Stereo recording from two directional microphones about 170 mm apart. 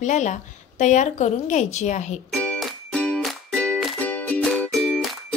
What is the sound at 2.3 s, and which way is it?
Music, 5° left (ahead or behind).